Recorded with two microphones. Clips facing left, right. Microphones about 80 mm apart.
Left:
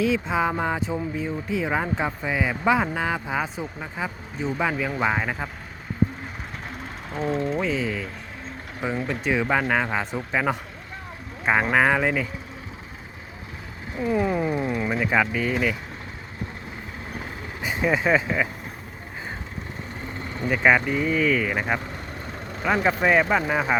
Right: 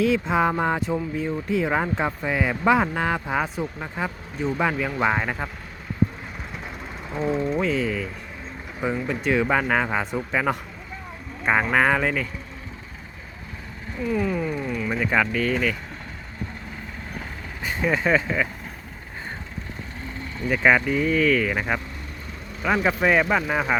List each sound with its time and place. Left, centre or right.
0.3 s speech: centre
6.7 s speech: centre
11.6 s speech: centre
13.9 s a sound: centre
14.9 s speech: centre
17.6 s speech: centre
20.5 s speech: centre